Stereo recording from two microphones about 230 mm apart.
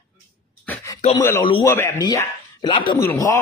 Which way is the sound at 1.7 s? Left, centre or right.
Centre.